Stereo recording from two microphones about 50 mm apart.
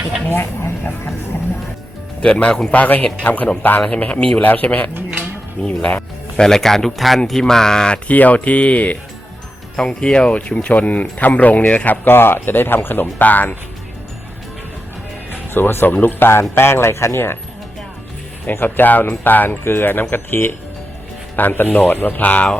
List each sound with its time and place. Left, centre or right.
0.3 s speech: left
2.2 s speech: centre
2.7 s speech: left
4.0 s speech: left
4.4 s speech: left
5.6 s music: left
6.4 s speech: centre
8.0 s speech: left
9.7 s speech: centre
12.0 s speech: left
15.3 s music: left
16.0 s speech: left
18.4 s speech: left